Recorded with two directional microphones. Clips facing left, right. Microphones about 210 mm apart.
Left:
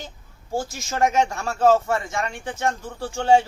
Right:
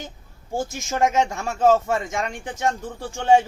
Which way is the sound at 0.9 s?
20° right (ahead or behind).